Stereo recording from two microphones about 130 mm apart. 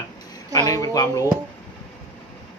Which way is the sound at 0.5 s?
25° left (ahead or behind).